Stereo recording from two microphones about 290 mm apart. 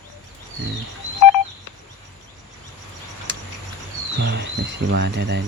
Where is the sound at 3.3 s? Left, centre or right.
Right.